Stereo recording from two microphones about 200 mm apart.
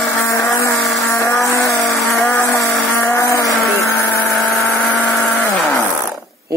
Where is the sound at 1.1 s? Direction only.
15° left (ahead or behind).